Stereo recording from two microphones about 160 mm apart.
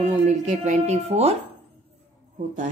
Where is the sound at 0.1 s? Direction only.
45° right (ahead or behind).